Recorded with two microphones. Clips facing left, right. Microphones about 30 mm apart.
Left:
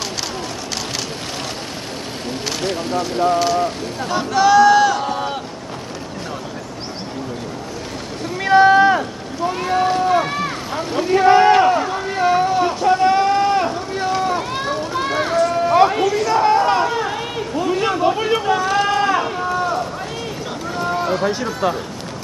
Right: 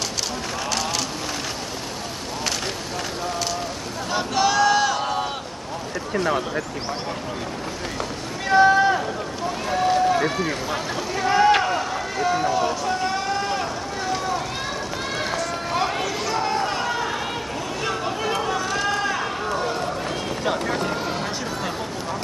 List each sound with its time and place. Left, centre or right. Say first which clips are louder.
4.1 s speech: left 7 dB; centre
8.5 s speech: left 5 dB; left
11.0 s speech: left 8 dB; left
11.6 s vehicle: left 7 dB; left
15.0 s run: left 10 dB; left
15.3 s run: left 14 dB; left
16.3 s a sound: left 9 dB; left
18.8 s run: left 7 dB; left
20.4 s vehicle: right 6 dB; right
20.8 s speech: left 6 dB; centre